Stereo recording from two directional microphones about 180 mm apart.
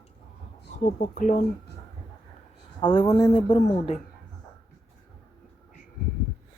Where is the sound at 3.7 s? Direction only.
35° left (ahead or behind).